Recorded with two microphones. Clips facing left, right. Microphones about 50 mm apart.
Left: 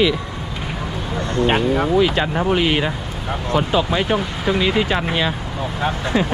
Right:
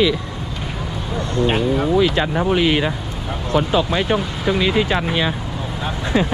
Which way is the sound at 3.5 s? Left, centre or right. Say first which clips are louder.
Right 1 dB; left.